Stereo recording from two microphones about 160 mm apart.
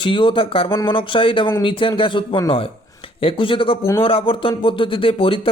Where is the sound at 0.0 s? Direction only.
30° left (ahead or behind).